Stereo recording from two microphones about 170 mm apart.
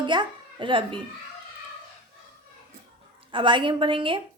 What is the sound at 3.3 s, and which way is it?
Speech, 30° right (ahead or behind).